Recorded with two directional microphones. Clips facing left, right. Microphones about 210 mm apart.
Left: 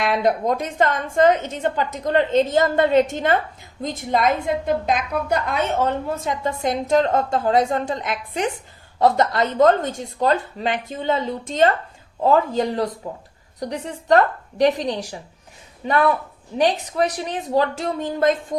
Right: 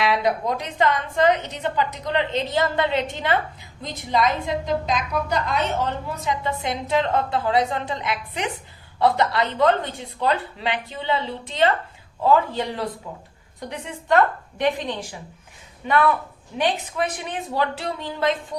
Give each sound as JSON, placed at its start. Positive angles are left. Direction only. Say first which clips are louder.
{"t": 0.0, "sound": "a woman's voice", "louder": "left 2 dB", "side_deg": 50}
{"t": 16.6, "sound": "speech", "louder": "left 4 dB", "side_deg": 40}